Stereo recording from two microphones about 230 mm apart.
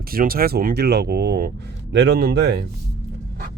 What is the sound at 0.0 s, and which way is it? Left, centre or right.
Speech, right.